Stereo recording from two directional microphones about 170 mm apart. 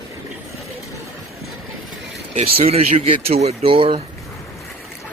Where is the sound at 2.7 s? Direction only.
35° right (ahead or behind).